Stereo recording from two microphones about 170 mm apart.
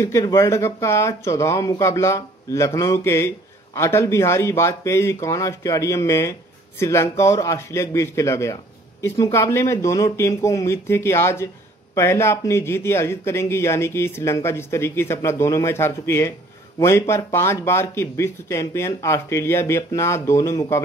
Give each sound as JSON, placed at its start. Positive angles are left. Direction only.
{"t": 0.0, "sound": "speech", "side_deg": 20}